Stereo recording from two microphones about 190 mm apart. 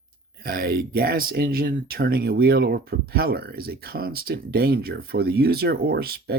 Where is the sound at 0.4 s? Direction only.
55° right (ahead or behind).